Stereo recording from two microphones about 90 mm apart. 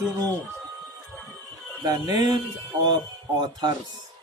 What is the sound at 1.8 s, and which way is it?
Speech, 45° right (ahead or behind).